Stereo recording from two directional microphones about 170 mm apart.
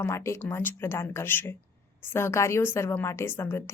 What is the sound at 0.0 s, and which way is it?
Speech, 15° left (ahead or behind).